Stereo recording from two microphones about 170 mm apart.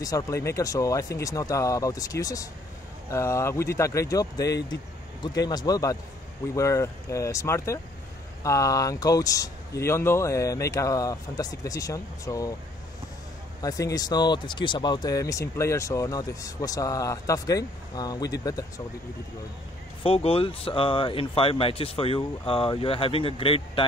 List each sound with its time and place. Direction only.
0.0 s speech: 20° left (ahead or behind)
13.6 s speech: 20° left (ahead or behind)
20.0 s speech: 35° left (ahead or behind)